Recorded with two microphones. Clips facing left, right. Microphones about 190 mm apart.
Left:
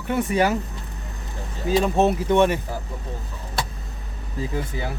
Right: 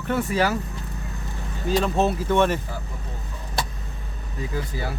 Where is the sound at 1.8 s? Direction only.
15° left (ahead or behind).